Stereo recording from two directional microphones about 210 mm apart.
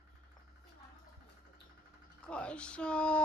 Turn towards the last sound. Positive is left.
turn(degrees=5)  # may be behind; listen again after turning